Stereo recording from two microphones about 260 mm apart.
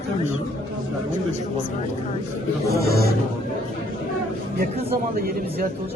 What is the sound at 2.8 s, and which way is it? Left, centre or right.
Speech, right.